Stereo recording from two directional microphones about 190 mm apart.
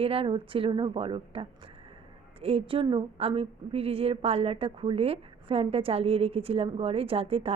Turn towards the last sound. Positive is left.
turn(degrees=-30)  # may be behind; listen again after turning